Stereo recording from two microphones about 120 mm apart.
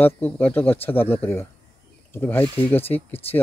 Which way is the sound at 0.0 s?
15° left (ahead or behind).